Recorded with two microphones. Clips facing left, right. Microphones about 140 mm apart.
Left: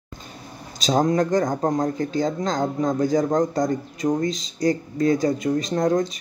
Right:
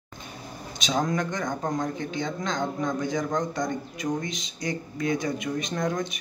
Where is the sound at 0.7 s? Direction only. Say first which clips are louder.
Left 7 dB; 35° left (ahead or behind).